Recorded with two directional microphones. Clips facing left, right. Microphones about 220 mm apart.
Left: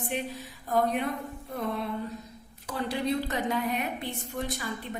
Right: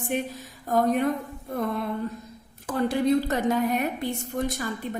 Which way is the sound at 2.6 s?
50° right (ahead or behind).